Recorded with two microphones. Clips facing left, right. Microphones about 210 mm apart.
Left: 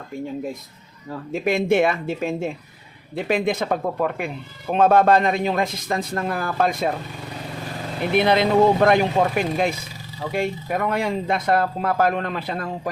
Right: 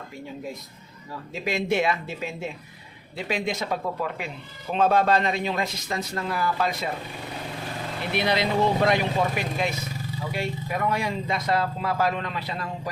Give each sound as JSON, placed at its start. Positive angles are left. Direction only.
{"t": 1.1, "sound": "speech", "side_deg": 55}
{"t": 8.1, "sound": "speech", "side_deg": 50}